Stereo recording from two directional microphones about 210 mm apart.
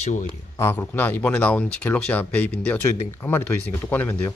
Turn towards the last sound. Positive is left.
turn(degrees=10)  # may be behind; listen again after turning